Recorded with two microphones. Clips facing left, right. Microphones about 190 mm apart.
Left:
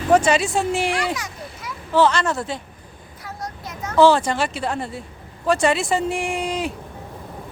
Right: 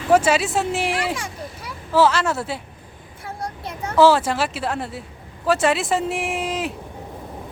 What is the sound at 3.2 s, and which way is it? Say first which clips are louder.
Child singing: right 2 dB; 30° right (ahead or behind).